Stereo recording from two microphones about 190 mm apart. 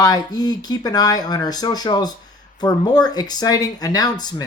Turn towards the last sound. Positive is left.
turn(degrees=20)  # may be behind; listen again after turning